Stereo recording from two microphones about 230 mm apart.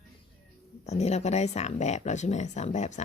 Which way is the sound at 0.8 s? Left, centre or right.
Left.